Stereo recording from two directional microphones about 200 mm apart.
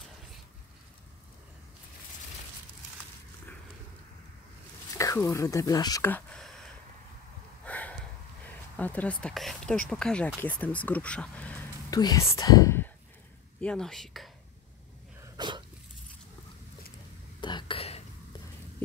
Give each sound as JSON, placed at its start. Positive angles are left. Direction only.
{"t": 4.9, "sound": "speech", "side_deg": 15}
{"t": 7.6, "sound": "a sound", "side_deg": 5}
{"t": 8.7, "sound": "speech", "side_deg": 5}
{"t": 11.9, "sound": "speech", "side_deg": 20}
{"t": 15.2, "sound": "dog", "side_deg": -20}
{"t": 17.4, "sound": "a sound", "side_deg": 25}